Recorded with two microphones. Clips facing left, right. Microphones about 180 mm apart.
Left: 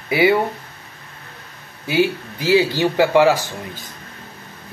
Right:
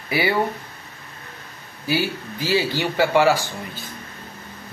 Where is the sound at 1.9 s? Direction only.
20° left (ahead or behind).